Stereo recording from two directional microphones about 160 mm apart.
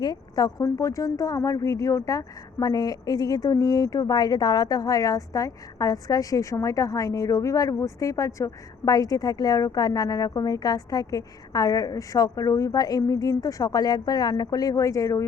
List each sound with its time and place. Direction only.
0.0 s a woman's voice: 25° left (ahead or behind)